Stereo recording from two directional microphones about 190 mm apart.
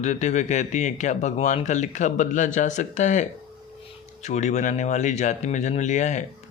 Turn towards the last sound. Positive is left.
turn(degrees=40)  # may be behind; listen again after turning